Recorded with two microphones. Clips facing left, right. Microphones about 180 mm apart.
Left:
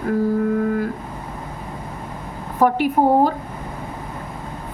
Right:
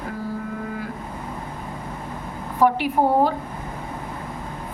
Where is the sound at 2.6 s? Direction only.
45° left (ahead or behind).